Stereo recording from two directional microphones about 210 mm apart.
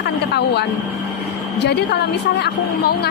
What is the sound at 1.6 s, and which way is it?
A woman's voice, 55° left (ahead or behind).